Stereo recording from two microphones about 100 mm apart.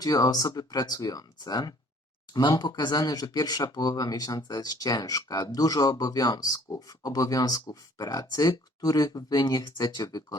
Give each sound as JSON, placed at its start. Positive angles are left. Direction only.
{"t": 0.0, "sound": "speech", "side_deg": 40}